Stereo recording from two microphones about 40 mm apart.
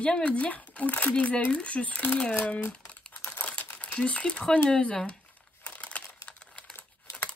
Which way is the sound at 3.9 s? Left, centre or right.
Left.